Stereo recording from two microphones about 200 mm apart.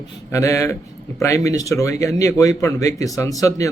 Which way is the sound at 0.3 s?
15° left (ahead or behind).